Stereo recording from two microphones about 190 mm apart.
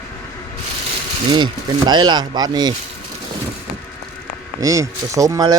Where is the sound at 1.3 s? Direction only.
25° right (ahead or behind).